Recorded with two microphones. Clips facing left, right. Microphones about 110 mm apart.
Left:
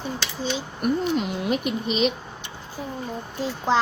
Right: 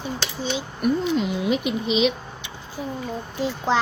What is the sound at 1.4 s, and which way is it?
Speech, 45° left (ahead or behind).